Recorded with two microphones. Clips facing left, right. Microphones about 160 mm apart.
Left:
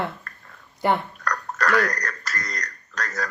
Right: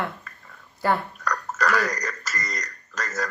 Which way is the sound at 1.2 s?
Centre (ahead or behind).